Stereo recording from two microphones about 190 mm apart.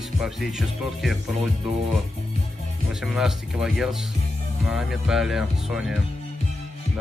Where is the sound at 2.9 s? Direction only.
Centre (ahead or behind).